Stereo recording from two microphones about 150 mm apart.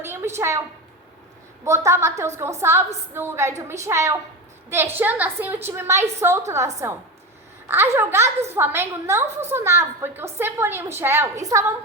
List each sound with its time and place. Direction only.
0.0 s a woman's voice: 15° right (ahead or behind)
1.6 s a woman's voice: 20° right (ahead or behind)